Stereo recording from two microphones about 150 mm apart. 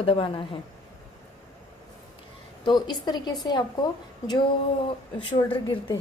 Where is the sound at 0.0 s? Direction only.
40° left (ahead or behind).